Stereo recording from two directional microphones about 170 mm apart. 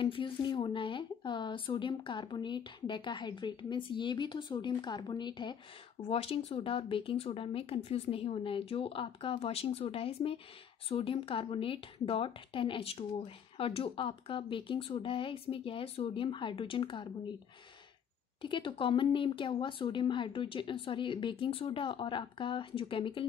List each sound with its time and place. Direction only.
0.0 s speech: 30° left (ahead or behind)
18.4 s speech: 30° left (ahead or behind)